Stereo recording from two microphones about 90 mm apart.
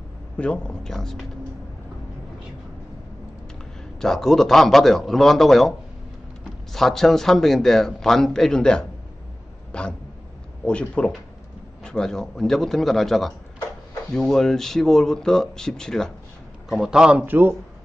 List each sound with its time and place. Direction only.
0.4 s speech: 10° left (ahead or behind)
4.0 s a man's voice: 5° left (ahead or behind)
9.7 s a sound: 10° left (ahead or behind)
10.6 s a man's voice: 15° left (ahead or behind); by 17.2 s 10° right (ahead or behind)
17.3 s a man's voice: 20° right (ahead or behind)